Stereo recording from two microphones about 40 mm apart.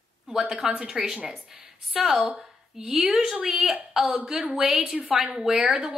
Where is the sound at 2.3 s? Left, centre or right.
Right.